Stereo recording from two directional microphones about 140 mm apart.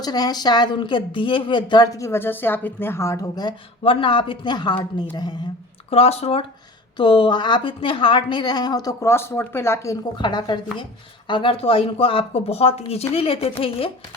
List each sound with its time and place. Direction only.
0.0 s speech: 30° left (ahead or behind)
5.9 s speech: 45° left (ahead or behind)
6.9 s a woman's voice: 35° left (ahead or behind)
10.2 s a woman's voice: 30° left (ahead or behind)